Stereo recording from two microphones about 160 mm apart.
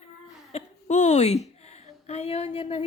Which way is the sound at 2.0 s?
40° left (ahead or behind).